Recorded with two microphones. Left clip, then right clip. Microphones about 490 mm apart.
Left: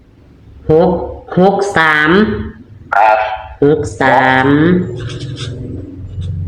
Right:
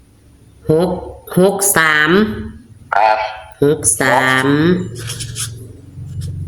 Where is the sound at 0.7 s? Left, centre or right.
Right.